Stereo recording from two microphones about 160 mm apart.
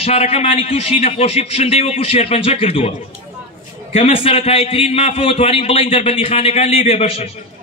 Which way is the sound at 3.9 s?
35° left (ahead or behind).